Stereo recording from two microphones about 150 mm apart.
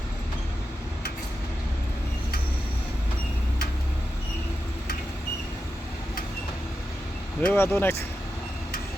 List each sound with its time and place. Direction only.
7.4 s speech: 15° left (ahead or behind)